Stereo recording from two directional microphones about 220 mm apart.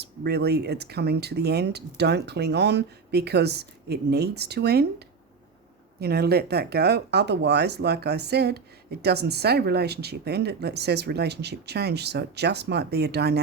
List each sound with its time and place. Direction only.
0.0 s speech: 50° right (ahead or behind)
6.0 s speech: 45° right (ahead or behind)